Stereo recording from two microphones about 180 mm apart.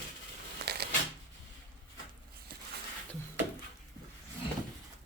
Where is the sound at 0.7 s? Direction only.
65° right (ahead or behind).